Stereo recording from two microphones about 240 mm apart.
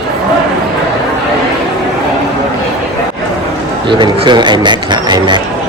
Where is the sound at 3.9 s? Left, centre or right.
Centre.